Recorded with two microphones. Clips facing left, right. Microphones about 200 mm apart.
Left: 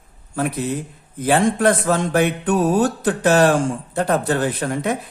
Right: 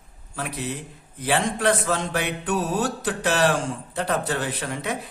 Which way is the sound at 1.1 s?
50° left (ahead or behind).